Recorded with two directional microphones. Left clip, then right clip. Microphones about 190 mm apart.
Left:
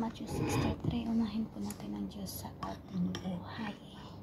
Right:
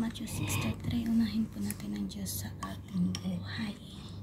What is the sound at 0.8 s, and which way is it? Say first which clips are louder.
Speech: right 3 dB; 20° right (ahead or behind).